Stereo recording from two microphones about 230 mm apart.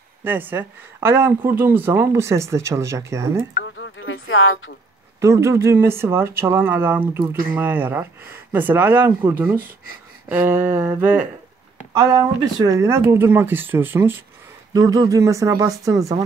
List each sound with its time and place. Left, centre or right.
0.2 s speech: centre
3.5 s speech: left
5.2 s speech: centre